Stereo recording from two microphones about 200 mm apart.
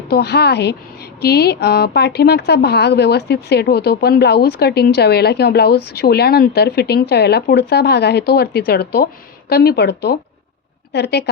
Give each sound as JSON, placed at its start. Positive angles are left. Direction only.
{"t": 0.1, "sound": "a woman's voice", "side_deg": 55}